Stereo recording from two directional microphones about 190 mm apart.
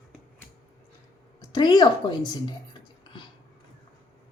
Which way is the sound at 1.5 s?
25° left (ahead or behind).